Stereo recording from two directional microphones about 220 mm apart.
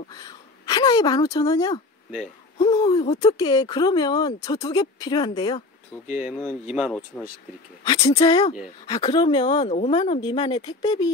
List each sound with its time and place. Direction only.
0.1 s speech: 20° left (ahead or behind)
6.0 s speech: 35° left (ahead or behind)
6.7 s speech: centre (ahead or behind)
7.8 s speech: 25° left (ahead or behind)